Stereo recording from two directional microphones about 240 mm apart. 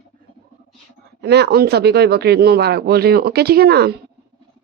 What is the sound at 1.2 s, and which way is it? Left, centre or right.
A woman's voice, right.